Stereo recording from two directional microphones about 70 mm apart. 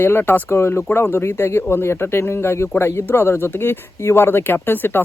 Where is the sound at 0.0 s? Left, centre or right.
Left.